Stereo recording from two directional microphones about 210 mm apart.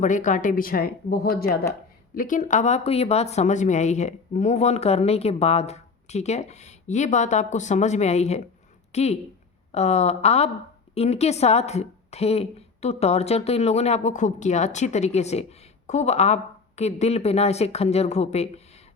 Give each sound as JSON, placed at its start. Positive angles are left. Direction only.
{"t": 0.0, "sound": "a woman's voice", "side_deg": 35}